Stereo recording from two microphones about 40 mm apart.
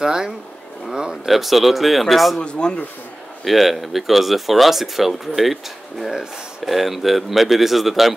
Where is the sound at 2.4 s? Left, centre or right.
Left.